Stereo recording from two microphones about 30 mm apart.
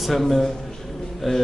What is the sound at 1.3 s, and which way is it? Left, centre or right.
Speech, left.